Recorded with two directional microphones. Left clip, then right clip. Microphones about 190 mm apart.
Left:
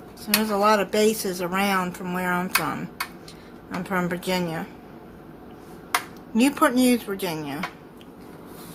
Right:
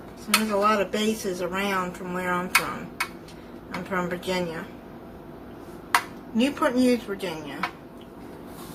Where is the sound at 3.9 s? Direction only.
55° left (ahead or behind).